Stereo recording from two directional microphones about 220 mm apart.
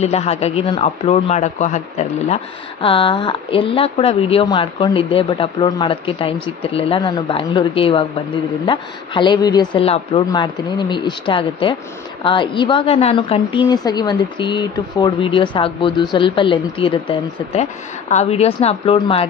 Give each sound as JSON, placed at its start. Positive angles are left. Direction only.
{"t": 0.0, "sound": "a man's voice", "side_deg": 30}